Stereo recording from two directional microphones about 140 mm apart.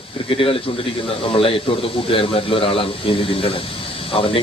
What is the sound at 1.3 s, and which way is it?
A man's voice, 40° left (ahead or behind).